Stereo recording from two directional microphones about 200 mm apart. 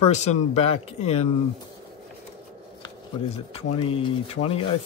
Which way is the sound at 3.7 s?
25° left (ahead or behind).